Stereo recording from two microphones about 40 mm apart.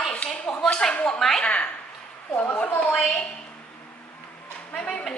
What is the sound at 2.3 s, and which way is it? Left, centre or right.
Speech, left.